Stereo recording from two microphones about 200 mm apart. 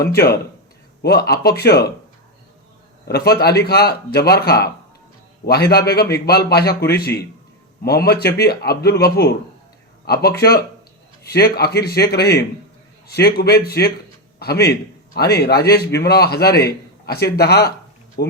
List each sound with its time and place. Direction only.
0.0 s a man's voice: 50° left (ahead or behind)
3.1 s a man's voice: 55° left (ahead or behind)